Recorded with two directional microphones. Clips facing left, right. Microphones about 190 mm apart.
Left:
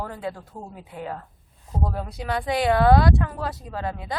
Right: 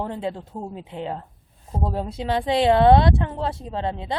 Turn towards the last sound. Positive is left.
turn(degrees=-25)  # may be behind; listen again after turning